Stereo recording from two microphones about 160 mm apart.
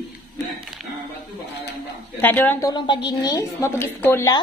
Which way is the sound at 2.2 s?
10° left (ahead or behind).